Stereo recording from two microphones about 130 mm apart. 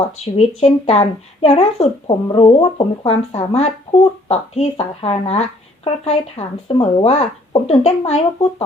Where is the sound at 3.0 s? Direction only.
55° left (ahead or behind).